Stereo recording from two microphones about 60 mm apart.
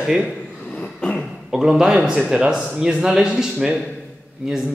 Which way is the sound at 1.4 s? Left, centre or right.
Centre.